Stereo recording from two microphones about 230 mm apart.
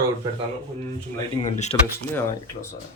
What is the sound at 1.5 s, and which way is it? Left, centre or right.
Speech, left.